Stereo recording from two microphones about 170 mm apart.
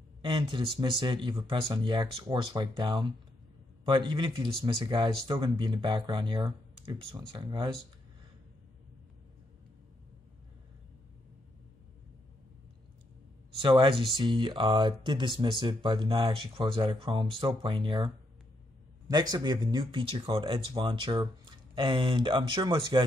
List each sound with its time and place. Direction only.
0.2 s speech: 30° right (ahead or behind)
13.5 s speech: 30° right (ahead or behind)